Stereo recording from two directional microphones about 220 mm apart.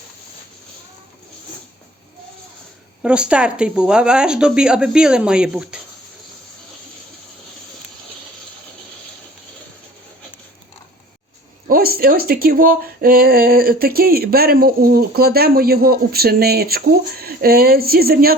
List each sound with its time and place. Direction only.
3.0 s speech: 5° right (ahead or behind)
11.7 s speech: 45° right (ahead or behind)